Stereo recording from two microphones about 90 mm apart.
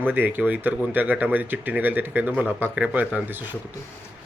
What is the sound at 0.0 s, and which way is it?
Speech, 20° right (ahead or behind).